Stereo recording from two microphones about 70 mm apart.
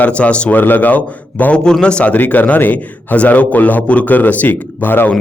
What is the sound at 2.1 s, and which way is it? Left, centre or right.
A man's voice, left.